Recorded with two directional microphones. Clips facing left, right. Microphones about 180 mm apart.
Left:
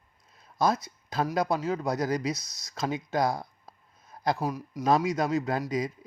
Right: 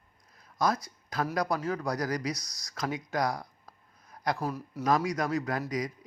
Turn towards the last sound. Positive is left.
turn(degrees=25)  # may be behind; listen again after turning